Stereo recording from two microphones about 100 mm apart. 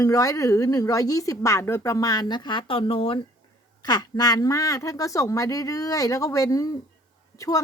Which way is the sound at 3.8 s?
40° left (ahead or behind).